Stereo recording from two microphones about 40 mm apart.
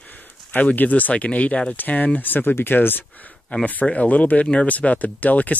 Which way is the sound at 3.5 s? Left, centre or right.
Left.